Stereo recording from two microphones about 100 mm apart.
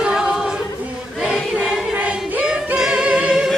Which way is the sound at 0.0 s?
5° right (ahead or behind).